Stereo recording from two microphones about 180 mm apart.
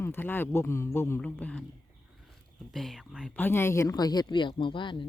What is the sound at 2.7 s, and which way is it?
Speech, centre (ahead or behind).